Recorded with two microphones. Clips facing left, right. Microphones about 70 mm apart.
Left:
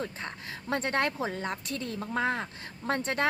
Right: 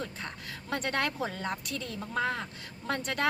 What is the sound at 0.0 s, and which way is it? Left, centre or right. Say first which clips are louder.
Speech: left 2 dB; left.